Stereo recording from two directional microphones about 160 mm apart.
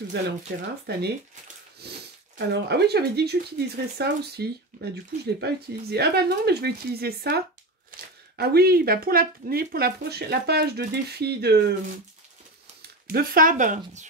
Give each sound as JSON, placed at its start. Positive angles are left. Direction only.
{"t": 0.5, "sound": "speech", "side_deg": -90}
{"t": 13.0, "sound": "speech", "side_deg": -70}